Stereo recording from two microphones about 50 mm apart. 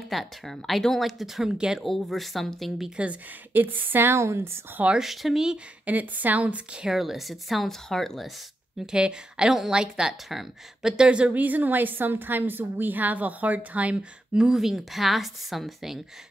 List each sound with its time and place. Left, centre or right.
0.1 s speech: centre
1.9 s speech: centre
3.0 s a woman's voice: right
4.1 s speech: right
5.0 s speech: centre
5.9 s a woman's voice: right
6.9 s speech: centre
8.7 s speech: centre
11.1 s a woman's voice: right
11.3 s a woman's voice: right
14.3 s speech: centre
14.6 s speech: centre